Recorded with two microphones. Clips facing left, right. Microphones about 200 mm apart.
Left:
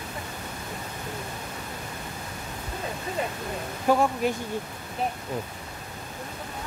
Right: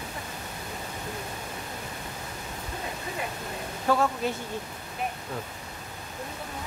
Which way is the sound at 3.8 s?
15° left (ahead or behind).